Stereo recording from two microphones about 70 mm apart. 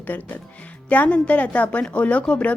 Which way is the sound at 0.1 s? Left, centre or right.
Left.